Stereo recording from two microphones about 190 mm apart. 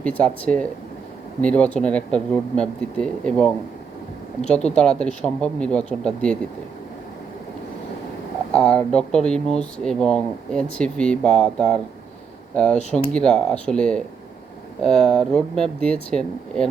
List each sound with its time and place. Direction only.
0.0 s speech: 5° left (ahead or behind)
4.7 s speech: 5° left (ahead or behind)
8.5 s speech: 5° left (ahead or behind)